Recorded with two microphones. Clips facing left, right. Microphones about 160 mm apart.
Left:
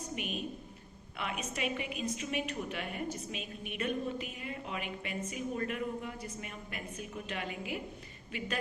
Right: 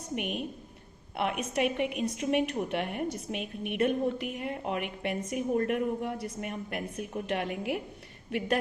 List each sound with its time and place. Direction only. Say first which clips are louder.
0.2 s a woman's voice: right 5 dB; 65° right (ahead or behind)